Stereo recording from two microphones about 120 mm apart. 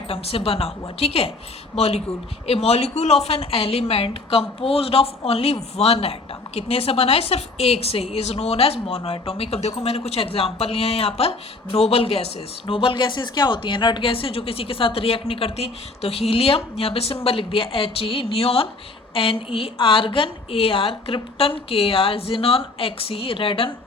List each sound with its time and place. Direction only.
0.1 s a woman's voice: 55° left (ahead or behind)